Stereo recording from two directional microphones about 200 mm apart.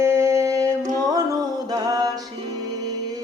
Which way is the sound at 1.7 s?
20° right (ahead or behind).